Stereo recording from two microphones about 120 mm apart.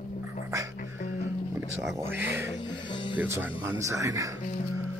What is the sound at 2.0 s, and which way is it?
Speech, 20° right (ahead or behind).